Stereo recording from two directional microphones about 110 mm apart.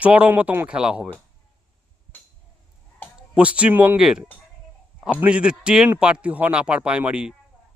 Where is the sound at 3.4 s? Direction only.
10° right (ahead or behind).